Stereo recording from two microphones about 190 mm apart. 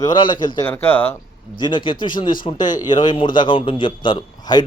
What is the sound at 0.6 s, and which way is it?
Speech, 10° left (ahead or behind).